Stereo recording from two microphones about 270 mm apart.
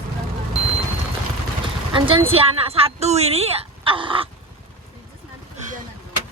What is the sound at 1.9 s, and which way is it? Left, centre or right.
A woman's voice, centre.